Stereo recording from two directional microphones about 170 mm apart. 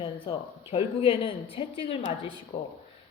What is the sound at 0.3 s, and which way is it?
A man's voice, 30° left (ahead or behind).